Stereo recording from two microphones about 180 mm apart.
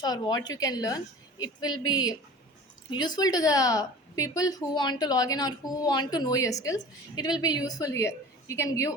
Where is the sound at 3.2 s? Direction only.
20° left (ahead or behind).